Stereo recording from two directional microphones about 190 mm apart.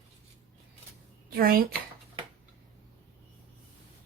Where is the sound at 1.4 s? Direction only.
50° right (ahead or behind).